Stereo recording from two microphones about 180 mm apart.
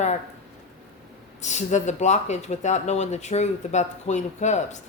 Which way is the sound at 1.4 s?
40° left (ahead or behind).